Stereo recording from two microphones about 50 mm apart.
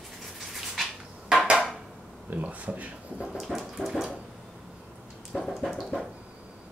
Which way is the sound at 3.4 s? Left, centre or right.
Centre.